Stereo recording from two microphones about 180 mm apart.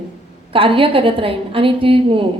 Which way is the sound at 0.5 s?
30° right (ahead or behind).